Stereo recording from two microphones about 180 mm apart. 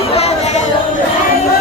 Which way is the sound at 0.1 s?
35° left (ahead or behind).